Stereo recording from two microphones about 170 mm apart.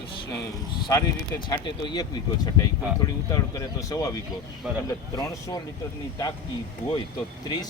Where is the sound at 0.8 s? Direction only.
25° left (ahead or behind).